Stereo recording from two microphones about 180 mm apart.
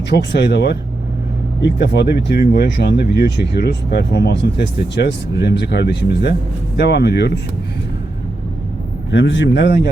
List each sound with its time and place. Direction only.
0.1 s speech: 70° left (ahead or behind)
9.0 s speech: 85° left; by 9.9 s 70° left (ahead or behind)